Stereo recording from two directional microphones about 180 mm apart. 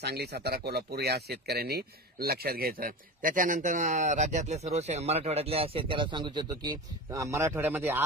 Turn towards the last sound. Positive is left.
turn(degrees=-10)  # may be behind; listen again after turning